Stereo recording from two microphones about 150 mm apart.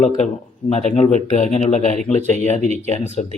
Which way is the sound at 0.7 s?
45° left (ahead or behind).